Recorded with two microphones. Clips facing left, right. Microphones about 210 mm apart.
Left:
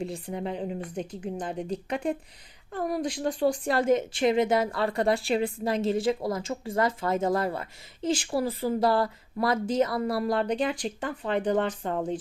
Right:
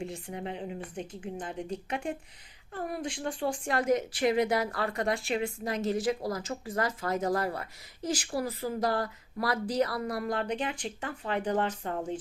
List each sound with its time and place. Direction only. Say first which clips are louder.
0.0 s speech: left 5 dB; 35° left (ahead or behind)